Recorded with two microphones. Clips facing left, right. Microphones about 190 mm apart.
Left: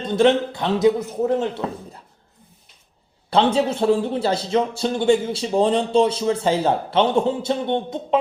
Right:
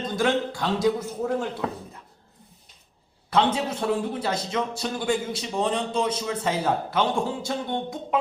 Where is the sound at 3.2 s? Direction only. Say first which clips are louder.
Left 5 dB; 30° left (ahead or behind).